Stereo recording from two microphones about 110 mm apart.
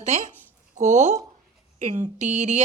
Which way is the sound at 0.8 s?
90° right.